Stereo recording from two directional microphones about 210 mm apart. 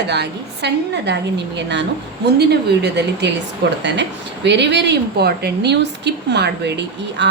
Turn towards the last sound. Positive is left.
turn(degrees=-55)  # may be behind; listen again after turning